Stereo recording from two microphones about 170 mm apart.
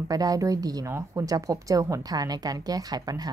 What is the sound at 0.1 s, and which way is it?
A woman's voice, 20° right (ahead or behind).